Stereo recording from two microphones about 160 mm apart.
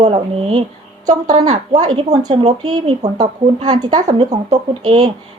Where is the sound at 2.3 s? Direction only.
40° right (ahead or behind).